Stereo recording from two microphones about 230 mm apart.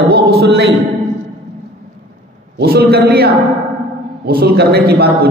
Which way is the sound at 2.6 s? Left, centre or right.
Right.